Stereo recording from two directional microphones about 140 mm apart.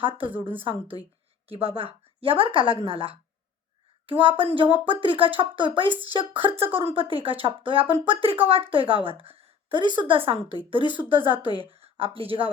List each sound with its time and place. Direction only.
0.3 s speech: 15° right (ahead or behind)
0.6 s a woman's voice: 40° right (ahead or behind)